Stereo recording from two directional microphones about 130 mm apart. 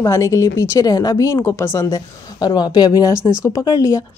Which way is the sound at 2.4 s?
30° left (ahead or behind).